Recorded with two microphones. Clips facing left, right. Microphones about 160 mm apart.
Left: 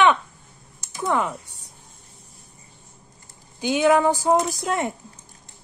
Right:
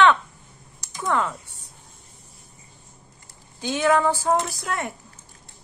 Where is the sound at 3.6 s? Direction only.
15° left (ahead or behind).